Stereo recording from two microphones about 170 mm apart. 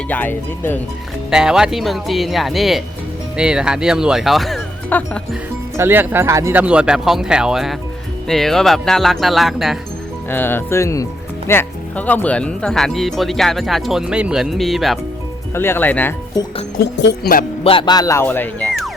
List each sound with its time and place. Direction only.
0.1 s speech: 10° left (ahead or behind)
1.3 s speech: 5° right (ahead or behind)
5.7 s speech: 15° right (ahead or behind)
10.2 s speech: 10° left (ahead or behind)
15.5 s speech: 15° left (ahead or behind)
16.7 s speech: 65° left (ahead or behind)
17.6 s speech: 30° left (ahead or behind); by 18.9 s 5° left (ahead or behind)